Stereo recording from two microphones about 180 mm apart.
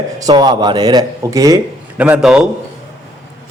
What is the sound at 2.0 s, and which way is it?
Speech, 5° right (ahead or behind).